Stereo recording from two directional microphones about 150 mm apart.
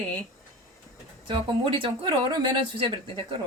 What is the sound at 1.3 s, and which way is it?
Speech, 30° right (ahead or behind).